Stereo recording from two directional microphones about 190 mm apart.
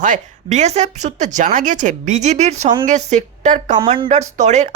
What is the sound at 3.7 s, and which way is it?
Speech, 25° right (ahead or behind).